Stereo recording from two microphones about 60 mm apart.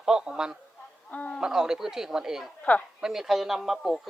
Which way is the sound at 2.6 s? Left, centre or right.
Left.